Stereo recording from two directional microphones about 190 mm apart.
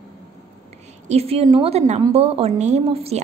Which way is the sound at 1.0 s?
35° right (ahead or behind).